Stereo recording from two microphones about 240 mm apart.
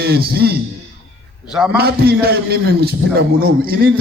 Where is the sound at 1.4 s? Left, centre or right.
Centre.